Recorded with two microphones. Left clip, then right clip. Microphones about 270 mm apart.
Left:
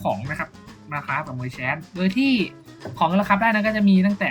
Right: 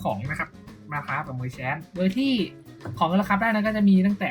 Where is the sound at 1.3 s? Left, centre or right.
Centre.